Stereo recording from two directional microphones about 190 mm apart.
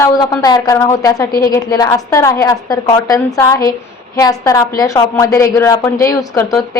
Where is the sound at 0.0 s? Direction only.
20° left (ahead or behind).